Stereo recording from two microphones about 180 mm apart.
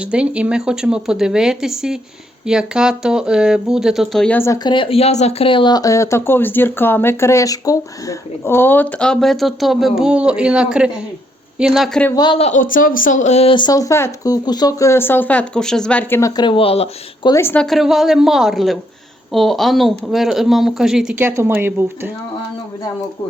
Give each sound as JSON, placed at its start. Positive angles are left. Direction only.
{"t": 0.0, "sound": "a woman's voice", "side_deg": -5}
{"t": 12.1, "sound": "speech", "side_deg": 25}
{"t": 12.5, "sound": "speech", "side_deg": 50}
{"t": 17.3, "sound": "a woman's voice", "side_deg": 10}